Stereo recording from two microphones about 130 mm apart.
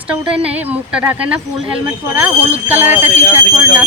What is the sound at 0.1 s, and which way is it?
Speech, 10° right (ahead or behind).